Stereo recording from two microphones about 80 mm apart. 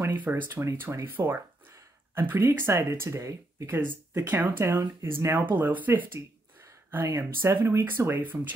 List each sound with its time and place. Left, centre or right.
0.0 s speech: right
7.1 s speech: right